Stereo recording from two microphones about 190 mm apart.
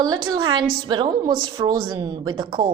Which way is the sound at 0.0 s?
20° right (ahead or behind).